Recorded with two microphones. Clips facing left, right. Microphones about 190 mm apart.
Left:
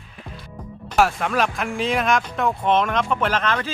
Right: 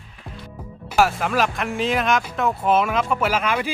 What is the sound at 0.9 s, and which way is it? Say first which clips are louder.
Speech: even; centre (ahead or behind).